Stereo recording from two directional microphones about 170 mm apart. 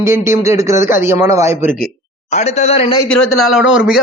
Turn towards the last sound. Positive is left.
turn(degrees=0)  # may be behind; listen again after turning